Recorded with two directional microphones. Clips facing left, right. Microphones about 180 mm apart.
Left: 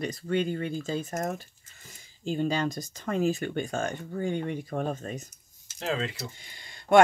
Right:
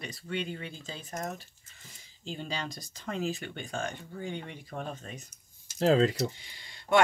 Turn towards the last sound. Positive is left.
turn(degrees=50)  # may be behind; listen again after turning